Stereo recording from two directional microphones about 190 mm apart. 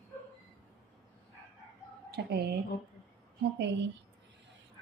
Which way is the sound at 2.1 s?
60° right (ahead or behind).